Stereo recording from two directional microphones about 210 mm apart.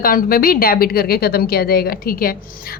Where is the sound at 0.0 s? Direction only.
40° left (ahead or behind).